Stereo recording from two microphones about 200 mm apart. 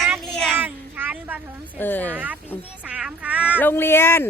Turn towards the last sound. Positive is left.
turn(degrees=10)  # may be behind; listen again after turning